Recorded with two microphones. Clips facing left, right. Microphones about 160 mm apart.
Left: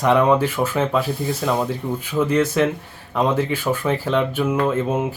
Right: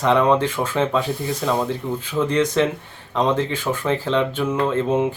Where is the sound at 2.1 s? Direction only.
10° left (ahead or behind).